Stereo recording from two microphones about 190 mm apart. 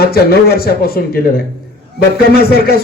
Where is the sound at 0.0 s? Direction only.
55° left (ahead or behind).